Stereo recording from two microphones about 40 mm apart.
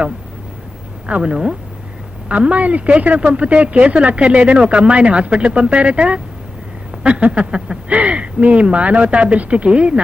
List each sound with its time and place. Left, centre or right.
1.0 s speech: right
2.3 s speech: right
7.3 s speech: right